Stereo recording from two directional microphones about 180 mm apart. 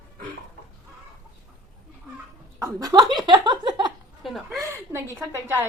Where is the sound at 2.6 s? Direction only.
20° right (ahead or behind).